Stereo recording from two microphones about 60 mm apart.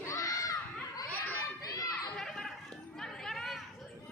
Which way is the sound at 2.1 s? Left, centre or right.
Centre.